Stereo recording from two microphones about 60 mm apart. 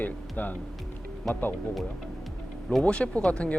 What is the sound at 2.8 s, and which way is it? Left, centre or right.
Speech, centre.